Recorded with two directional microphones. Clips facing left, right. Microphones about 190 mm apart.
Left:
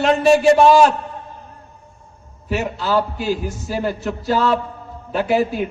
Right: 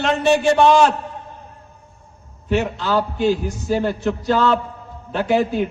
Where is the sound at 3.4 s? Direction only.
5° left (ahead or behind).